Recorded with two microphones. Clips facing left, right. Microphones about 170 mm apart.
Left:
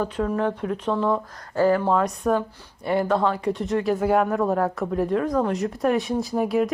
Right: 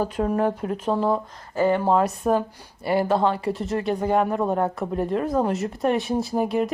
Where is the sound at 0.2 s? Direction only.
35° right (ahead or behind).